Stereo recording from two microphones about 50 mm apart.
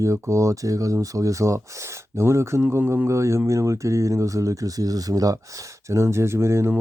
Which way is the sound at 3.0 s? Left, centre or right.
Right.